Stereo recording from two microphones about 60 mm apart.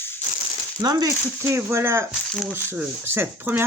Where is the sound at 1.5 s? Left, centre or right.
Right.